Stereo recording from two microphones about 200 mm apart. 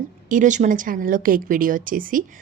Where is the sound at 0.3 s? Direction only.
40° right (ahead or behind).